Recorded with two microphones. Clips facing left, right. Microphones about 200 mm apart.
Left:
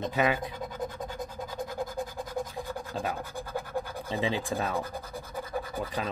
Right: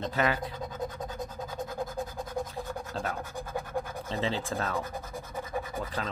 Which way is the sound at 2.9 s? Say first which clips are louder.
Left 2 dB; 15° left (ahead or behind).